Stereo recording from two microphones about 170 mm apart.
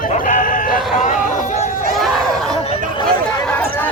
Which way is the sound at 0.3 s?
50° left (ahead or behind).